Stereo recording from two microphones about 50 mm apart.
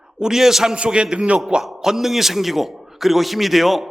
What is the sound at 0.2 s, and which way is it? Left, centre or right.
A man's voice, centre.